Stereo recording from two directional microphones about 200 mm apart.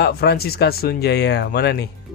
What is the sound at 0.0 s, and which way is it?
Speech, 50° left (ahead or behind).